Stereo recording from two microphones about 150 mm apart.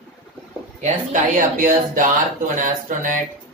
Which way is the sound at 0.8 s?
60° right (ahead or behind).